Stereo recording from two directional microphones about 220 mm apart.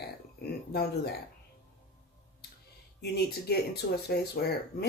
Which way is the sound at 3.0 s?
45° left (ahead or behind).